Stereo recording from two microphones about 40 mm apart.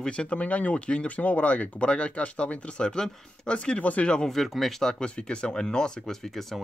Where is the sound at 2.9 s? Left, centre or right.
Centre.